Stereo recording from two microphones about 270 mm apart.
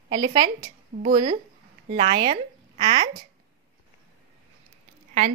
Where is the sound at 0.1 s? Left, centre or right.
Centre.